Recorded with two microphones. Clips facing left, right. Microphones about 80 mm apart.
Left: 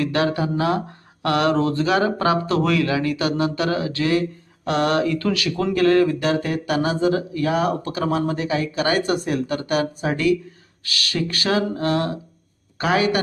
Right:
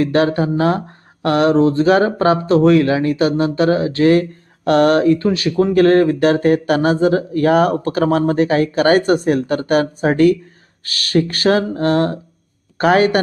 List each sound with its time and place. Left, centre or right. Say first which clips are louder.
0.0 s speech: right 6 dB; right
1.9 s speech: right 6 dB; right
5.1 s speech: right 7 dB; right
5.7 s speech: right 4 dB; right